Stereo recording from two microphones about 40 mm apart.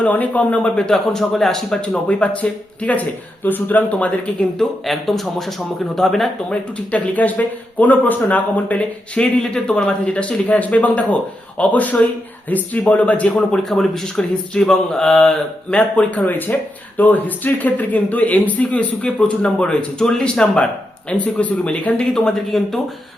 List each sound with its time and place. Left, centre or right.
0.1 s speech: left
0.8 s mantra: centre
2.0 s speech: left
4.6 s speech: centre
6.7 s speech: left
9.1 s speech: left
13.3 s a man's voice: centre
14.6 s mantra: centre
15.7 s speech: left
18.7 s a man's voice: left
20.0 s mantra: centre
21.1 s speech: left
22.1 s mantra: centre